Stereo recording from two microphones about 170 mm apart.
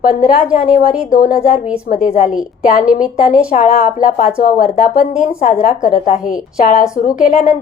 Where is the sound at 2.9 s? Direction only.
50° left (ahead or behind).